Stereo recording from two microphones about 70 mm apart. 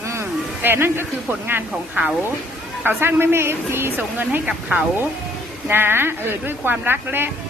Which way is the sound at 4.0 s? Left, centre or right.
Right.